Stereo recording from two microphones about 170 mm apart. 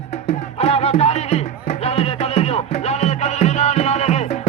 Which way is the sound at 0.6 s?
35° left (ahead or behind).